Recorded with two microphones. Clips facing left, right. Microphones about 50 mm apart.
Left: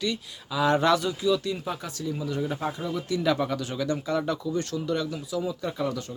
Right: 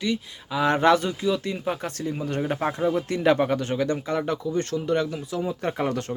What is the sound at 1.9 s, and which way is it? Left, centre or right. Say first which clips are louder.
Speech: right 2 dB; right.